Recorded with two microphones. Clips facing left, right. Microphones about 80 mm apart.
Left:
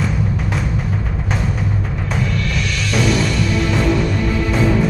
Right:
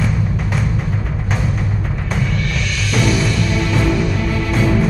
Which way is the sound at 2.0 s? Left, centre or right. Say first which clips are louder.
Even; centre.